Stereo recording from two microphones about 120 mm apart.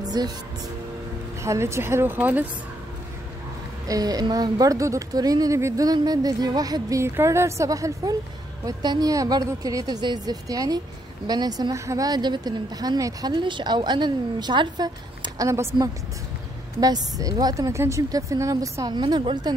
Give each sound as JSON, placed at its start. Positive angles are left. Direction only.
{"t": 0.0, "sound": "music", "side_deg": -35}
{"t": 1.4, "sound": "a woman's voice", "side_deg": -25}
{"t": 3.8, "sound": "speech", "side_deg": -30}